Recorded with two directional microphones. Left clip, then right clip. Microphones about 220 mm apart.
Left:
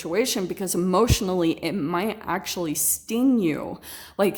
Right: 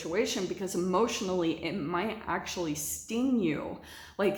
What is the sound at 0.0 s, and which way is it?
A woman's voice, 50° left (ahead or behind).